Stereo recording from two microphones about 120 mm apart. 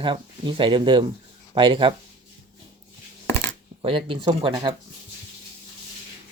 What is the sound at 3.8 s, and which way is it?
Speech, 45° right (ahead or behind).